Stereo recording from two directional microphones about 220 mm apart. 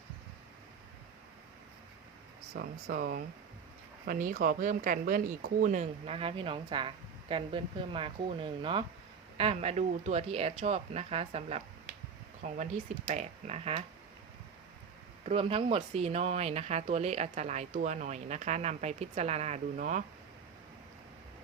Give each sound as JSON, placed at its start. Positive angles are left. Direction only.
{"t": 2.6, "sound": "speech", "side_deg": -45}
{"t": 15.2, "sound": "speech", "side_deg": -25}